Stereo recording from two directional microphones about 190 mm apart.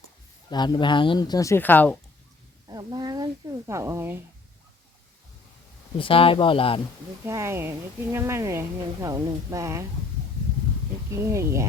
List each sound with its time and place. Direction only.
0.5 s speech: 25° left (ahead or behind)
2.6 s speech: 20° right (ahead or behind)
6.0 s speech: 30° left (ahead or behind)
7.3 s speech: 15° right (ahead or behind)
11.1 s speech: 15° right (ahead or behind)